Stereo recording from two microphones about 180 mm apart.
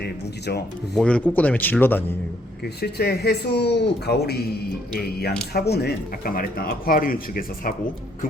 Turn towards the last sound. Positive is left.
turn(degrees=55)  # may be behind; listen again after turning